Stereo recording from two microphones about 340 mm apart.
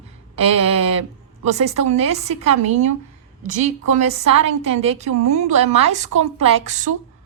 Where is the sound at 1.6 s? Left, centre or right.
Centre.